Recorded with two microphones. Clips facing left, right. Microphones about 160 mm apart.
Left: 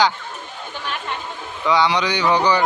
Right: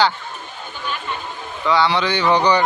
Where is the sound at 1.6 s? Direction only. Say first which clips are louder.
Even; 15° left (ahead or behind).